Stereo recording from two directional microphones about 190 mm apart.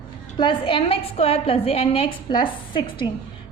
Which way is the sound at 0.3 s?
25° left (ahead or behind).